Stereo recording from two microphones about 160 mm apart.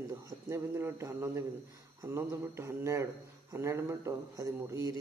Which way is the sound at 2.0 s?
15° right (ahead or behind).